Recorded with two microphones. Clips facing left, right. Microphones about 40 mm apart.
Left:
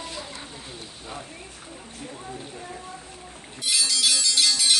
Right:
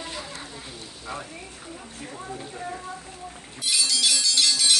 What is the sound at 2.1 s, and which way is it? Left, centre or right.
Speech, centre.